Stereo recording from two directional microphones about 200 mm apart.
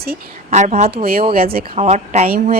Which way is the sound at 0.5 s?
35° right (ahead or behind).